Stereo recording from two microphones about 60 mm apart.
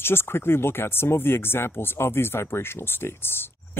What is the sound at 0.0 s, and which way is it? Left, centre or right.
Speech, left.